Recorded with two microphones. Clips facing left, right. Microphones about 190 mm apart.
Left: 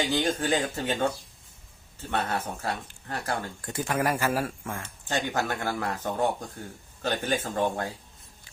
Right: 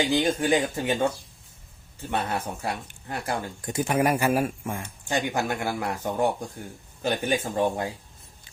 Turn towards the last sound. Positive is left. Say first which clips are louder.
# right 2 dB
turn(degrees=-15)  # may be behind; listen again after turning